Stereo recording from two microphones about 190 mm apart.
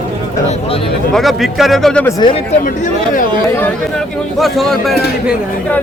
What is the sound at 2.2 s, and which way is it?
Speech, 25° left (ahead or behind).